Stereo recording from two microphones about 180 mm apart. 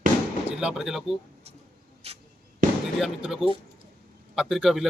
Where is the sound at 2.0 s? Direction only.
35° right (ahead or behind).